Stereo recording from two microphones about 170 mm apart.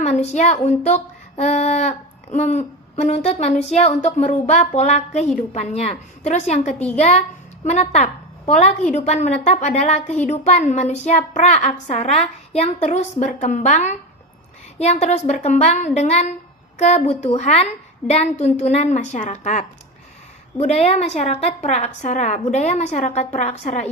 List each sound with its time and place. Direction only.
0.0 s a woman's voice: 40° left (ahead or behind)